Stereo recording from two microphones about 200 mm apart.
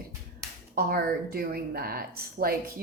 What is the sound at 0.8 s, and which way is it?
A woman's voice, 50° right (ahead or behind).